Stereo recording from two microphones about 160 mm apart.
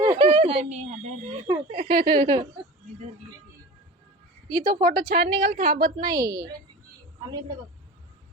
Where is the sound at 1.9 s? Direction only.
30° right (ahead or behind).